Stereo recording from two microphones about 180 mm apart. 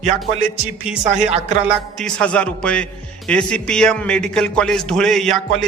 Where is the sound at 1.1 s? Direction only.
40° right (ahead or behind).